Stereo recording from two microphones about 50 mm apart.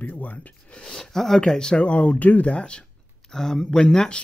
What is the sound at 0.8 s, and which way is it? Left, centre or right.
Speech, centre.